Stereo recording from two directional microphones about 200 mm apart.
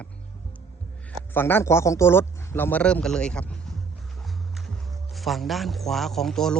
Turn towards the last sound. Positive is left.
turn(degrees=0)  # may be behind; listen again after turning